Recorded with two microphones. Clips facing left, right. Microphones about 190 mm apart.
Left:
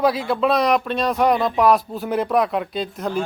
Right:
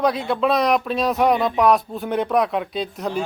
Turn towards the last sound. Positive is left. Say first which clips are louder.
# left 1 dB
turn(degrees=0)  # may be behind; listen again after turning